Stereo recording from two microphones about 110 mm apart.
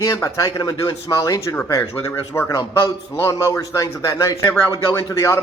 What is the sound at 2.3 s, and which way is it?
A man's voice, 20° left (ahead or behind).